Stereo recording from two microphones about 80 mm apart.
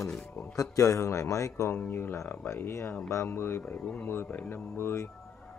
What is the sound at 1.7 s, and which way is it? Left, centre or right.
Speech, left.